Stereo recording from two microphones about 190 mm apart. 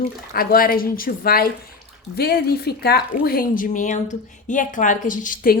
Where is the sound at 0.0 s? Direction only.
50° left (ahead or behind).